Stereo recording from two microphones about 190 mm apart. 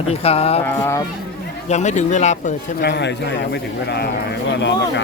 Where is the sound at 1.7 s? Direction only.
40° left (ahead or behind).